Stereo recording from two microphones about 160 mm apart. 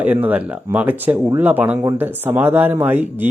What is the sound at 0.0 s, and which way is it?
Speech, 10° right (ahead or behind).